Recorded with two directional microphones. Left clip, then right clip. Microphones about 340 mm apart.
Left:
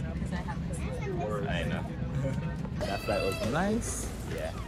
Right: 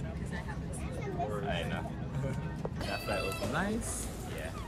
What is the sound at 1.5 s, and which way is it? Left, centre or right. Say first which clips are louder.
Vehicle: left 2 dB; centre.